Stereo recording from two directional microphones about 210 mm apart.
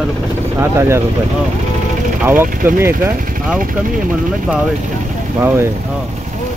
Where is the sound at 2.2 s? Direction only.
10° right (ahead or behind).